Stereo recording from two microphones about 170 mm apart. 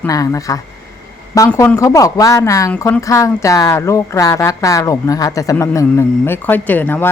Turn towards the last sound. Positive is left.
turn(degrees=10)  # may be behind; listen again after turning